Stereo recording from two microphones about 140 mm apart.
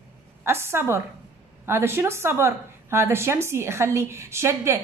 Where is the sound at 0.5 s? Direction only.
20° right (ahead or behind).